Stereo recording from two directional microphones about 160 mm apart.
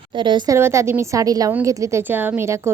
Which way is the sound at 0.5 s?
20° right (ahead or behind).